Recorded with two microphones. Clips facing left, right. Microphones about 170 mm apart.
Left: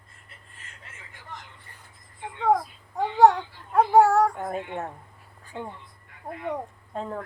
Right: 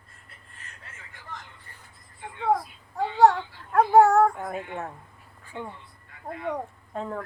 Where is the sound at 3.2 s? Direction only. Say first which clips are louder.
Left 1 dB; 15° left (ahead or behind).